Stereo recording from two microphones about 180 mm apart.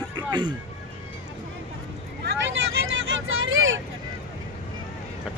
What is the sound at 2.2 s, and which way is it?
Vehicle, 90° right.